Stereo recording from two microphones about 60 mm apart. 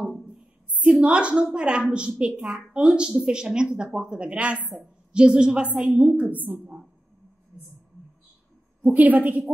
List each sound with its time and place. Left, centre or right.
0.7 s a woman's voice: right
8.9 s a woman's voice: right